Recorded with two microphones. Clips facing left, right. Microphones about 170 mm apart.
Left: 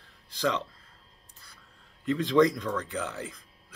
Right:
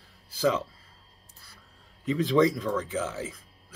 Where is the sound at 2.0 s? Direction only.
Centre (ahead or behind).